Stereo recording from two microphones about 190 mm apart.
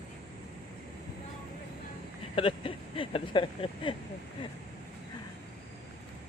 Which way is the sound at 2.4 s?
30° left (ahead or behind).